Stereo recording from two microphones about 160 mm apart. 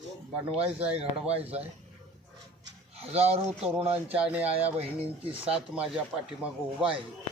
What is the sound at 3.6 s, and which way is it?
Speech, 10° right (ahead or behind).